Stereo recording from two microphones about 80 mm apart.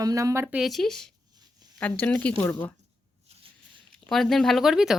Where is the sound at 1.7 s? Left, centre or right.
Centre.